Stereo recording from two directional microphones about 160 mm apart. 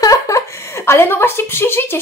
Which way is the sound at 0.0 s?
20° left (ahead or behind).